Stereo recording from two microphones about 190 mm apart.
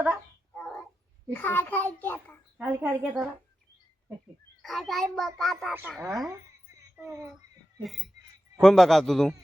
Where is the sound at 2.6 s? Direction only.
15° right (ahead or behind).